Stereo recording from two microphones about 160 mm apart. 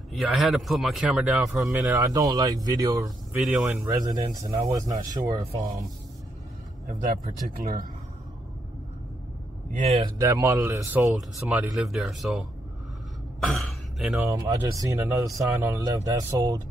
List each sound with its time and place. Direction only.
0.1 s speech: centre (ahead or behind)
1.4 s speech: 15° right (ahead or behind)
3.3 s speech: 10° right (ahead or behind)
6.9 s speech: 55° right (ahead or behind)
9.7 s speech: 45° right (ahead or behind)
10.0 s speech: 20° right (ahead or behind)
11.1 s speech: centre (ahead or behind)
13.5 s speech: centre (ahead or behind)
14.2 s speech: 20° right (ahead or behind)